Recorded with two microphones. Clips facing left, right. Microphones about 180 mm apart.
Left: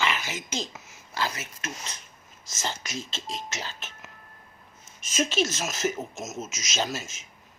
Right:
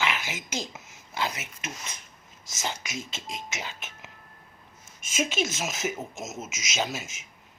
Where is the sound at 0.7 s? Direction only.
15° right (ahead or behind).